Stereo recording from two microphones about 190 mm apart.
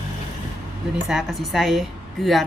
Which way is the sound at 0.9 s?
Centre (ahead or behind).